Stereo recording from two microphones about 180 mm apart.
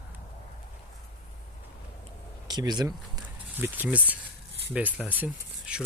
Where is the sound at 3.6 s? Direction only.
10° right (ahead or behind).